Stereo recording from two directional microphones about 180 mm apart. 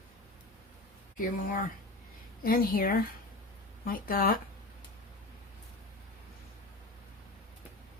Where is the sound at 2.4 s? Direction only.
50° left (ahead or behind).